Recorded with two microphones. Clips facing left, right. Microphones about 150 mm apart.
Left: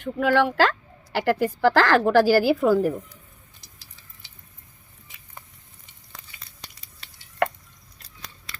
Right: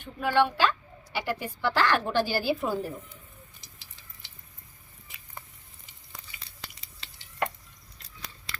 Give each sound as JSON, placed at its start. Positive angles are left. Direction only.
{"t": 0.0, "sound": "a woman's voice", "side_deg": 90}